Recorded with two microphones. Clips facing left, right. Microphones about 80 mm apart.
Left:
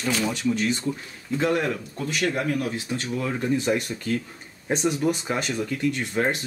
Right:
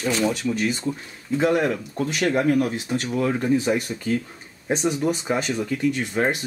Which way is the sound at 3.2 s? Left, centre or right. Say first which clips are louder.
Right 5 dB; centre.